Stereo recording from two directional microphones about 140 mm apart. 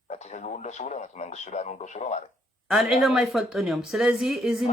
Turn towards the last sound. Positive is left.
turn(degrees=0)  # may be behind; listen again after turning